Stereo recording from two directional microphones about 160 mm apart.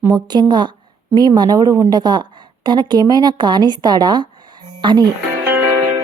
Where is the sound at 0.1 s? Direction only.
25° right (ahead or behind).